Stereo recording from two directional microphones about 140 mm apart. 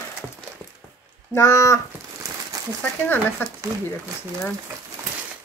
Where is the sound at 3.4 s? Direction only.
15° left (ahead or behind).